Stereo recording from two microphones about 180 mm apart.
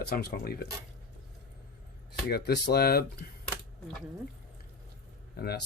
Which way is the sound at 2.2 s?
60° left (ahead or behind).